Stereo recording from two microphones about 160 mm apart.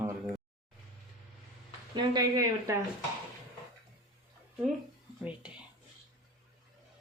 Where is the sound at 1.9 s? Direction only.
25° right (ahead or behind).